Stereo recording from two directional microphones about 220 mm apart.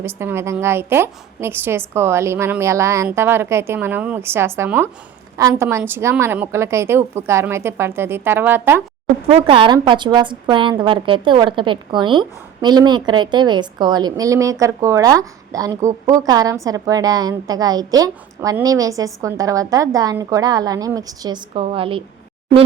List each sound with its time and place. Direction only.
0.0 s a woman's voice: 10° right (ahead or behind)
9.3 s a woman's voice: 25° right (ahead or behind)